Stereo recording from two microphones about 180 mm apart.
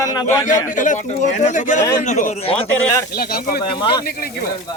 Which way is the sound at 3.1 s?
55° left (ahead or behind).